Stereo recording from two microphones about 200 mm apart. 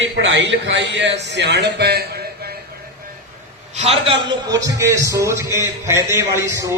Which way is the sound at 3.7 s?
30° right (ahead or behind).